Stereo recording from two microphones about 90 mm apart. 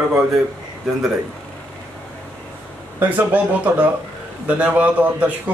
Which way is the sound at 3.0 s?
20° right (ahead or behind).